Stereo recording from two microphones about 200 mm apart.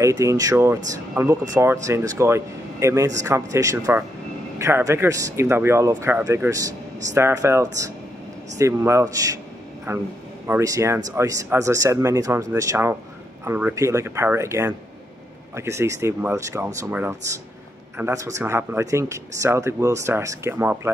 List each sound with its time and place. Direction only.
0.0 s speech: 15° right (ahead or behind)